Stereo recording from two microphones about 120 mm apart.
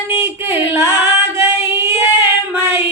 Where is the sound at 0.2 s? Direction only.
20° right (ahead or behind).